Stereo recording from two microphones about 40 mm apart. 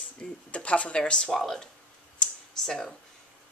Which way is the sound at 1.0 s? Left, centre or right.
Left.